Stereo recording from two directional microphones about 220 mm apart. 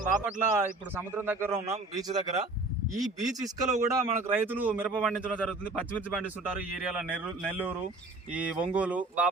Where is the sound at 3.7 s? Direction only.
35° right (ahead or behind).